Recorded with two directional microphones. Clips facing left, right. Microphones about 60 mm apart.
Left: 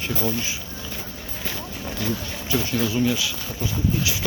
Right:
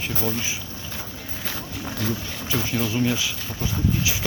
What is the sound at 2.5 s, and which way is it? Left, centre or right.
Speech, centre.